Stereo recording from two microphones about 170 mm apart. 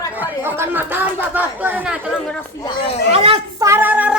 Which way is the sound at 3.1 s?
35° right (ahead or behind).